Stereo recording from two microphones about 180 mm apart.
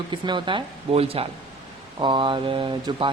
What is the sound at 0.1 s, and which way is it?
Speech, 25° right (ahead or behind).